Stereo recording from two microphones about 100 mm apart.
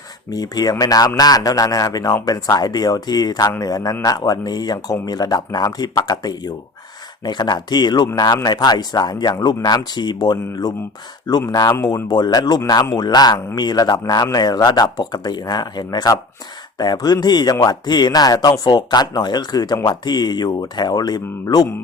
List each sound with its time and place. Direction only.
0.3 s speech: 40° left (ahead or behind)